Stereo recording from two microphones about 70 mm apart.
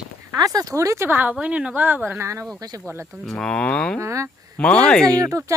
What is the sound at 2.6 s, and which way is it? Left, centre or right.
Speech, right.